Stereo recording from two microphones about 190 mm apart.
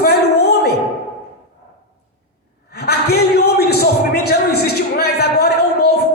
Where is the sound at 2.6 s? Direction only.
55° left (ahead or behind).